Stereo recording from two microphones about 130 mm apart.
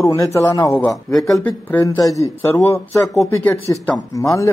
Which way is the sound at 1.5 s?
15° left (ahead or behind).